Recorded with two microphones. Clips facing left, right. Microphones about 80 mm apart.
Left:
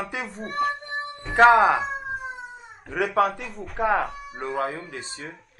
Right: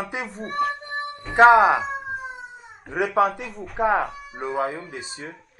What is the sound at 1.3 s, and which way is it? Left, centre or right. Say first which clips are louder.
Speech: right 2 dB; centre.